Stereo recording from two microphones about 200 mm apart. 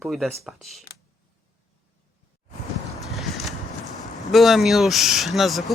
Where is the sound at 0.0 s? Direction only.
Centre (ahead or behind).